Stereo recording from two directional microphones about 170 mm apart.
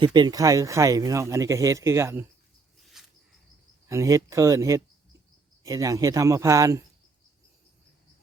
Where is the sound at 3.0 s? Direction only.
Centre (ahead or behind).